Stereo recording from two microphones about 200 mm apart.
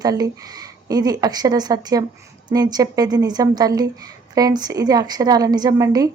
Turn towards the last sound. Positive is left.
turn(degrees=-20)  # may be behind; listen again after turning